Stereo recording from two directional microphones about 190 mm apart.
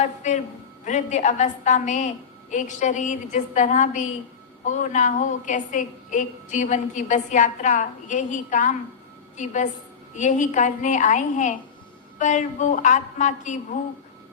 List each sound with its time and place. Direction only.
0.0 s a man's voice: 40° left (ahead or behind)